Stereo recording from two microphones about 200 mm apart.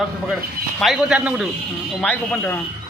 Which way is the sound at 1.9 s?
5° left (ahead or behind).